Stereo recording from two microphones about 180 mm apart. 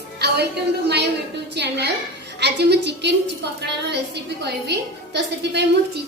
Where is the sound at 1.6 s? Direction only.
70° right (ahead or behind).